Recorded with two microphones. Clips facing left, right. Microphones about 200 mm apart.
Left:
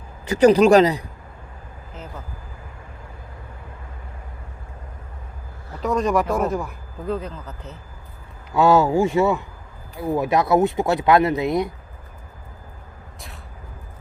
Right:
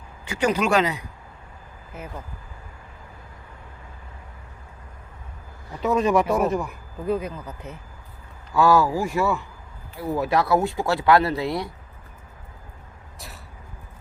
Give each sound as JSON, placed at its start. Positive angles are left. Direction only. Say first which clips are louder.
{"t": 0.3, "sound": "speech", "louder": "left 9 dB", "side_deg": 35}
{"t": 5.8, "sound": "speech", "louder": "even", "side_deg": -5}
{"t": 7.1, "sound": "speech", "louder": "right 2 dB", "side_deg": -10}
{"t": 8.5, "sound": "speech", "louder": "left 3 dB", "side_deg": 25}